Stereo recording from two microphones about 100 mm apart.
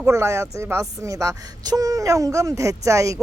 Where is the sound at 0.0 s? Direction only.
30° right (ahead or behind).